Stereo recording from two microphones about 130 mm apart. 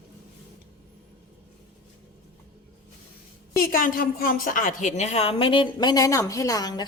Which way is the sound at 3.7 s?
90° left.